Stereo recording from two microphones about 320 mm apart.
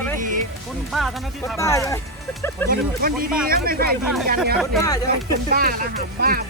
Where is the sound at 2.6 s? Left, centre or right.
Right.